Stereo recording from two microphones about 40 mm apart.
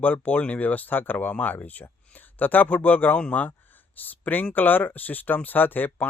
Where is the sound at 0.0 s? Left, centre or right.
Left.